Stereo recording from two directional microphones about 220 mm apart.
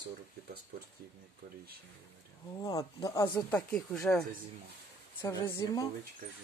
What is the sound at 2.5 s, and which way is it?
Speech, 15° left (ahead or behind).